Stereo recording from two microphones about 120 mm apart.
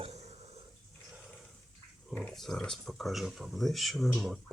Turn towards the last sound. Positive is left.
turn(degrees=0)  # may be behind; listen again after turning